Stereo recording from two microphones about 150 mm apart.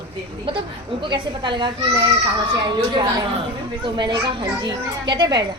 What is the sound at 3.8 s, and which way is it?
A woman's voice, 30° right (ahead or behind).